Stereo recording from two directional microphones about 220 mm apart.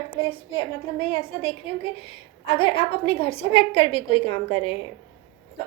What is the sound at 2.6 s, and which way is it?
A woman's voice, 25° left (ahead or behind).